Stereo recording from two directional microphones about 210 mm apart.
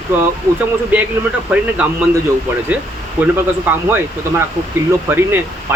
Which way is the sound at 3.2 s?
10° right (ahead or behind).